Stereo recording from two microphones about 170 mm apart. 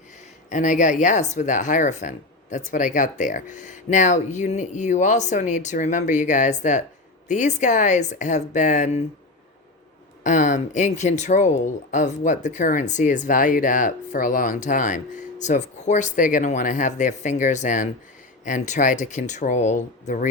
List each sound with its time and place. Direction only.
0.5 s speech: 45° left (ahead or behind)
10.2 s speech: 45° left (ahead or behind)